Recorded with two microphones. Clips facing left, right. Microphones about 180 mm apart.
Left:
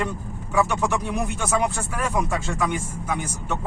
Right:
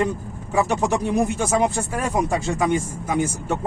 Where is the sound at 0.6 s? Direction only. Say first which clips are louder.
Right 2 dB; 40° right (ahead or behind).